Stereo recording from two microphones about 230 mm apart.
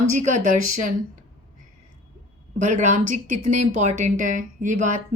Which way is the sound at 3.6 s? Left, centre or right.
Right.